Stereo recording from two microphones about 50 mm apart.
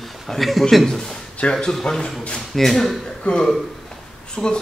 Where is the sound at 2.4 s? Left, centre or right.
Centre.